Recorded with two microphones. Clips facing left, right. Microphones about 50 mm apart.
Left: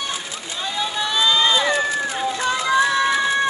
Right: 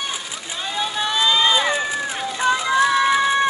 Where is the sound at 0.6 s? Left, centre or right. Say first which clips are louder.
Even; right.